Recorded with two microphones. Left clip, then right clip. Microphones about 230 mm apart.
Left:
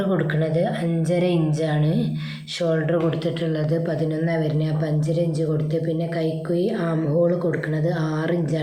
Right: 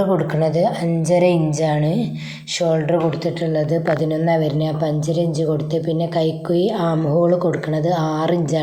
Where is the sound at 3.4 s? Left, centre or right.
Centre.